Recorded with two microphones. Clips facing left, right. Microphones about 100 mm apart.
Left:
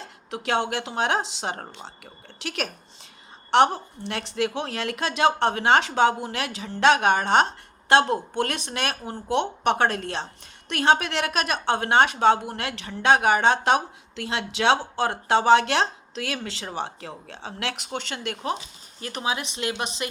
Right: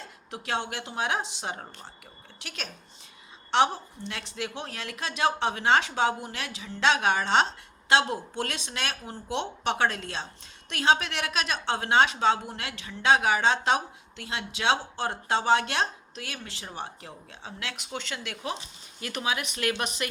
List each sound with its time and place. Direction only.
0.0 s a woman's voice: 70° left (ahead or behind)
18.9 s speech: 35° left (ahead or behind)